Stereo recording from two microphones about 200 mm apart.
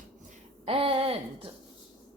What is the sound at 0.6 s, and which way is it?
Speech, 30° right (ahead or behind).